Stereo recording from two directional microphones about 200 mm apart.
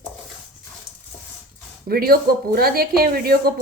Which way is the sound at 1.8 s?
50° right (ahead or behind).